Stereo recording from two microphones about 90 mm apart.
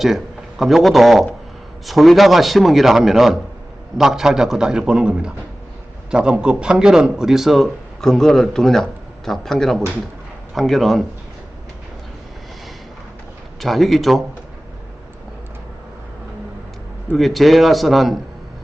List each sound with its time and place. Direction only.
0.6 s a man's voice: centre (ahead or behind)
13.6 s a man's voice: centre (ahead or behind)
17.1 s a man's voice: centre (ahead or behind)